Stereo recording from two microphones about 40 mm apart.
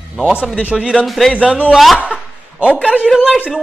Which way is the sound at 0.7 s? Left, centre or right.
Right.